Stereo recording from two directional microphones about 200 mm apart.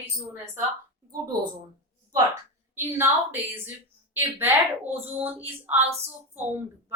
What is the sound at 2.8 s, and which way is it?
A woman's voice, 10° right (ahead or behind).